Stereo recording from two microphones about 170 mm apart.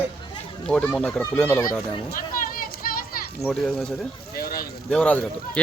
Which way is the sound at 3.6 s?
5° left (ahead or behind).